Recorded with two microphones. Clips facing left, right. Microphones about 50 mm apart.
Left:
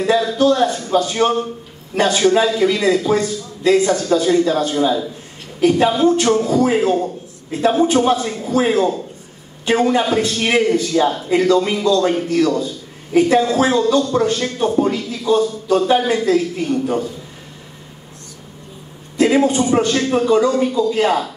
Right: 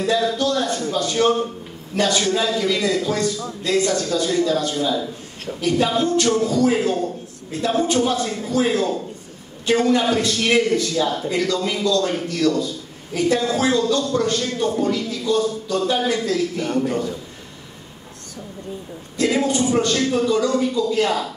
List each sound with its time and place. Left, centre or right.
0.0 s a sound: left
0.8 s a man's voice: left
16.6 s a man's voice: right
19.1 s a man's voice: left